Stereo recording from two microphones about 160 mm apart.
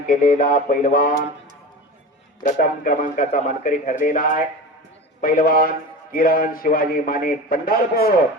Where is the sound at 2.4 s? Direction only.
60° left (ahead or behind).